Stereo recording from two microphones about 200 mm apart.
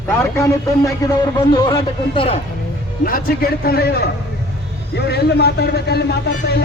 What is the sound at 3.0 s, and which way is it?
A man's voice, 45° left (ahead or behind).